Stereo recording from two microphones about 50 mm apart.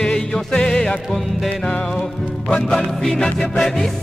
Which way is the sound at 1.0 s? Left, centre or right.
Centre.